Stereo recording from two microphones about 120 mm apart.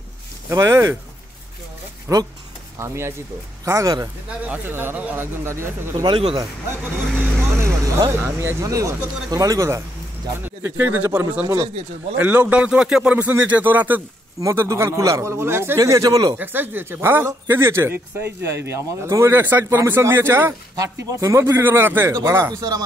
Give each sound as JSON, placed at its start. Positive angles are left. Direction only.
{"t": 0.5, "sound": "speech", "side_deg": -25}
{"t": 2.1, "sound": "speech", "side_deg": -20}
{"t": 4.5, "sound": "speech", "side_deg": -15}
{"t": 6.0, "sound": "speech", "side_deg": -50}
{"t": 7.5, "sound": "vehicle", "side_deg": -25}
{"t": 8.2, "sound": "speech", "side_deg": -20}
{"t": 16.3, "sound": "speech", "side_deg": -15}